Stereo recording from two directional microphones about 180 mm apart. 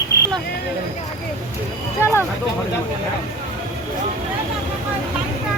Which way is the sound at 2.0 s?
15° left (ahead or behind).